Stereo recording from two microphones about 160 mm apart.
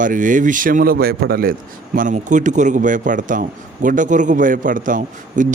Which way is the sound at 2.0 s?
50° right (ahead or behind).